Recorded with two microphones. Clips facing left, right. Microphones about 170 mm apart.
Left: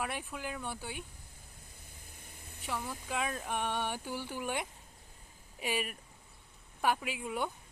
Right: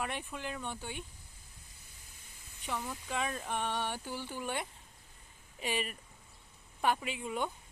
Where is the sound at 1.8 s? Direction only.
55° left (ahead or behind).